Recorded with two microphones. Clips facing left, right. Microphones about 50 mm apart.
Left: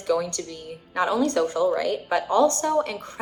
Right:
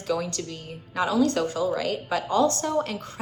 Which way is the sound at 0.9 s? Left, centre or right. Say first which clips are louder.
Left 1 dB; left.